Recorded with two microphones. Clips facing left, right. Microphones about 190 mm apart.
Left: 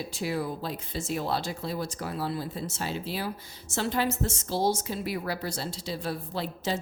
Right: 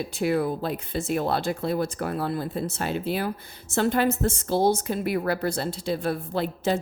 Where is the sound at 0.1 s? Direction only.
55° right (ahead or behind).